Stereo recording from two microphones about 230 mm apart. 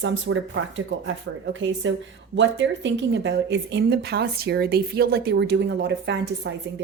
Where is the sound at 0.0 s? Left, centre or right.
Right.